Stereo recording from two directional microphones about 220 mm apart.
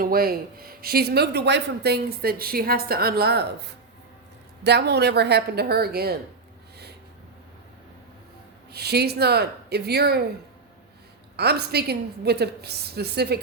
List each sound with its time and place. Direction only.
0.0 s speech: 40° right (ahead or behind)
8.7 s speech: 45° right (ahead or behind)
11.3 s speech: 45° right (ahead or behind)